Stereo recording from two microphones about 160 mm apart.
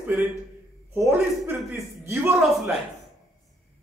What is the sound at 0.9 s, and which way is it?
Speech, 20° right (ahead or behind).